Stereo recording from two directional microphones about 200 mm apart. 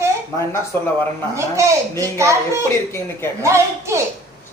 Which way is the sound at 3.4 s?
15° right (ahead or behind).